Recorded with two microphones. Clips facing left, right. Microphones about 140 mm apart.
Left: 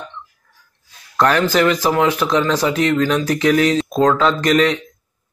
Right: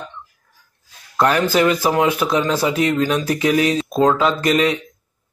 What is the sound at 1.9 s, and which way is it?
Speech, 15° right (ahead or behind).